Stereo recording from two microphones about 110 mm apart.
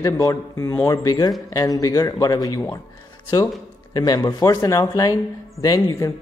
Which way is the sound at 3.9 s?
35° left (ahead or behind).